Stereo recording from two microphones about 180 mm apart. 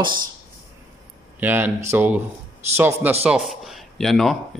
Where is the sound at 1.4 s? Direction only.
10° right (ahead or behind).